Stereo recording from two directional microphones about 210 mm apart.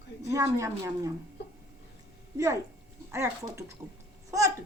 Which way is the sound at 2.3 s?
15° right (ahead or behind).